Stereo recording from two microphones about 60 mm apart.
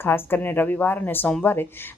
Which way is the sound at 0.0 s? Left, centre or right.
Left.